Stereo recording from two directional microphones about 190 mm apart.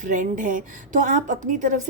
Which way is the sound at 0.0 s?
45° right (ahead or behind).